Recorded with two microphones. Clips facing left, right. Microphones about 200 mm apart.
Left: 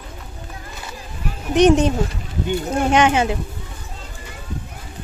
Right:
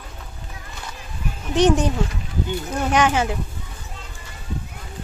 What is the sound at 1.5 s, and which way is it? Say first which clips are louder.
Speech: left 4 dB; 20° left (ahead or behind).